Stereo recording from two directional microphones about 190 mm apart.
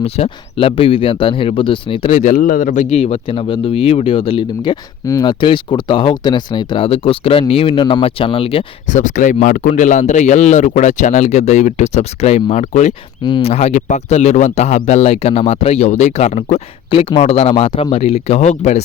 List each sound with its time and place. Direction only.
0.0 s speech: 30° left (ahead or behind)
2.1 s speech: 45° left (ahead or behind)